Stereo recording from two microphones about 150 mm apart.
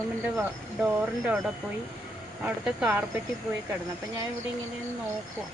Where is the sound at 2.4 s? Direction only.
5° right (ahead or behind).